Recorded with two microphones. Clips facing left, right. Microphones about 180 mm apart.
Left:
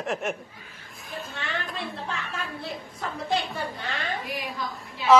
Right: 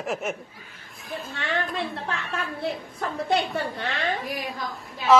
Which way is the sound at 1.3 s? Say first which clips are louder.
Right 6 dB; 60° right (ahead or behind).